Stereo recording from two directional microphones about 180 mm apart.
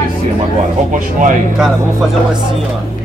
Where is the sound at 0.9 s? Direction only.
45° right (ahead or behind).